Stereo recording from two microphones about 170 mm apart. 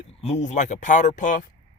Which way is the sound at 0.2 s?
40° left (ahead or behind).